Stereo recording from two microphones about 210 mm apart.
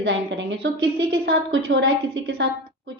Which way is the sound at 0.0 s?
60° right (ahead or behind).